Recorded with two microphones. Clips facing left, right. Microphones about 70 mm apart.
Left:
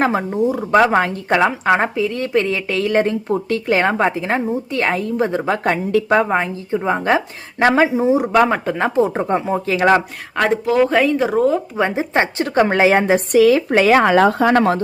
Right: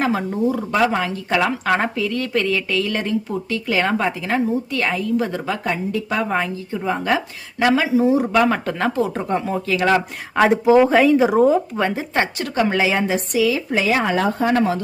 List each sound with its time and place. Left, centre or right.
0.0 s a woman's voice: left
0.7 s speech: left
1.4 s a woman's voice: left
5.6 s speech: left
6.2 s a woman's voice: left
8.5 s speech: centre
8.8 s a woman's voice: left
9.7 s speech: left
10.3 s speech: centre
11.8 s a woman's voice: left